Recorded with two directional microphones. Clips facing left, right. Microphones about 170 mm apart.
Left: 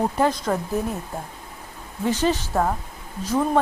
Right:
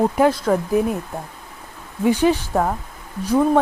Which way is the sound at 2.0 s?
15° right (ahead or behind).